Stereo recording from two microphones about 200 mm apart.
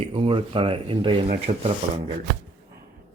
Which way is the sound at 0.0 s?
25° right (ahead or behind).